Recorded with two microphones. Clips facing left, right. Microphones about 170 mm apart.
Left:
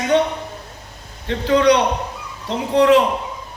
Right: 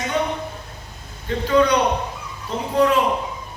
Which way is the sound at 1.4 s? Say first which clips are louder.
Left 3 dB; 80° left.